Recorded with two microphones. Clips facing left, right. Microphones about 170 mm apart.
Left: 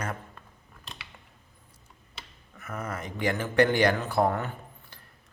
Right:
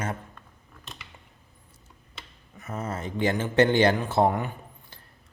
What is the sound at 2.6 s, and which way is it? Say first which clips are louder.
Speech: right 2 dB; 25° right (ahead or behind).